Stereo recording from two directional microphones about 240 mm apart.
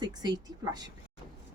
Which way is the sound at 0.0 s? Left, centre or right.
Centre.